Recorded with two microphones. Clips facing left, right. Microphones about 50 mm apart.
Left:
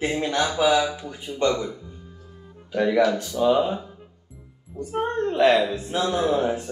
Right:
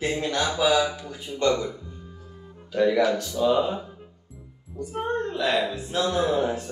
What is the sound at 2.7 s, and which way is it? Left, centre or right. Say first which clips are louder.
Speech: left 1 dB; left.